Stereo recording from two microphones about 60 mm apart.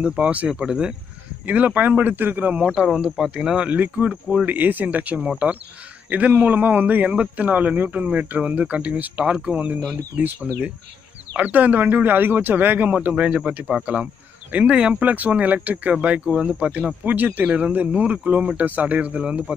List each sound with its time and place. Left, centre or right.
0.2 s a man's voice: right
1.4 s a man's voice: right
2.5 s speech: centre
2.9 s a man's voice: centre; by 5.2 s right
5.2 s speech: centre
6.0 s a man's voice: right
14.5 s a man's voice: centre